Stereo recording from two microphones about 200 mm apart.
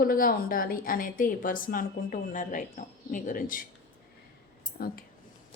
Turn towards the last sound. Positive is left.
turn(degrees=50)  # may be behind; listen again after turning